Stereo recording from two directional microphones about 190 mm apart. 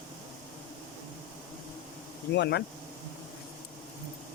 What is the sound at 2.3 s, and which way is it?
Speech, 60° left (ahead or behind).